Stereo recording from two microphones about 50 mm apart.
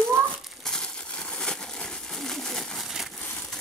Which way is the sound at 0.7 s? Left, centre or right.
Centre.